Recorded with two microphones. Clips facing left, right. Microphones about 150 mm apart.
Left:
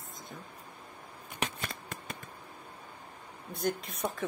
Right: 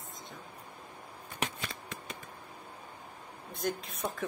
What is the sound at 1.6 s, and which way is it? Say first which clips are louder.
Shuffling cards: left 1 dB; 45° left (ahead or behind).